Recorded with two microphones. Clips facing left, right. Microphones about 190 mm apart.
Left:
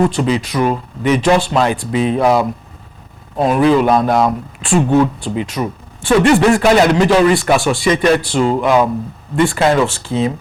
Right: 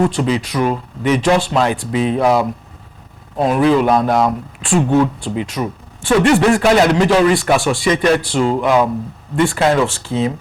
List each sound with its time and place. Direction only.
0.0 s speech: 15° left (ahead or behind)